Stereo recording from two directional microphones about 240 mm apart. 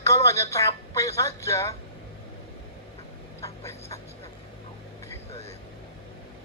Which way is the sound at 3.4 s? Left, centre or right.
Centre.